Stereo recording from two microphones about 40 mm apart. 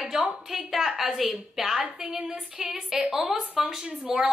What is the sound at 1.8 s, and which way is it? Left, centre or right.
A woman's voice, centre.